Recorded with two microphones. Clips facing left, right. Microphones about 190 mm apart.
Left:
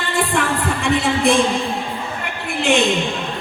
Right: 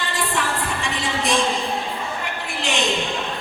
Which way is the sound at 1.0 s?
55° left (ahead or behind).